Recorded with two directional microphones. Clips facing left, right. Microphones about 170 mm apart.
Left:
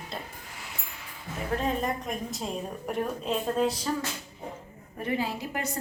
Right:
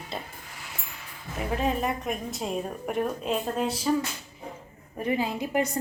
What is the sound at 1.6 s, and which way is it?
A woman's voice, 10° right (ahead or behind).